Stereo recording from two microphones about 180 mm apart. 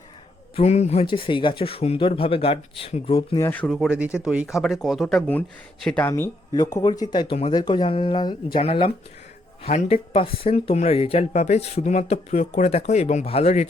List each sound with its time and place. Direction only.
0.5 s speech: 35° left (ahead or behind)
3.3 s speech: 10° left (ahead or behind); by 13.7 s 40° left (ahead or behind)